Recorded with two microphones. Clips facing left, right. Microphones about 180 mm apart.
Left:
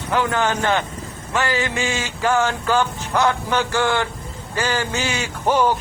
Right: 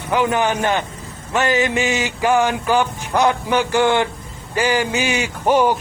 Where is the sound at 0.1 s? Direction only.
15° right (ahead or behind).